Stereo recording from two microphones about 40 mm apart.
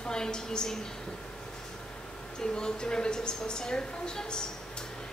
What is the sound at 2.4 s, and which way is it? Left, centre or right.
A woman's voice, left.